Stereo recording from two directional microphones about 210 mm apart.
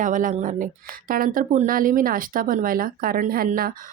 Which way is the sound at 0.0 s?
40° right (ahead or behind).